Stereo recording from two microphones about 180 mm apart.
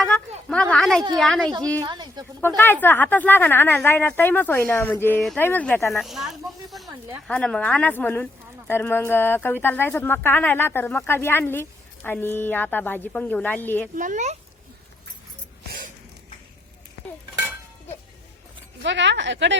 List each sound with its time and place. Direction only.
0.4 s a woman's voice: 5° left (ahead or behind)
1.8 s speech: 25° right (ahead or behind)
2.8 s speech: 10° left (ahead or behind)
5.9 s speech: centre (ahead or behind)
13.9 s speech: 45° right (ahead or behind)
18.8 s a woman's voice: 85° right